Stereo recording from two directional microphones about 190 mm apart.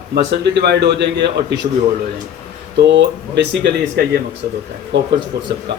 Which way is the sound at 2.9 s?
65° right (ahead or behind).